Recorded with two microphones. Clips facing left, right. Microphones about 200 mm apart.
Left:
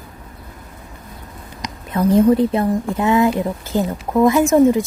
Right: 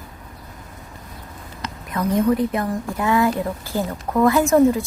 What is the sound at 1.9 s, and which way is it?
Speech, 30° left (ahead or behind).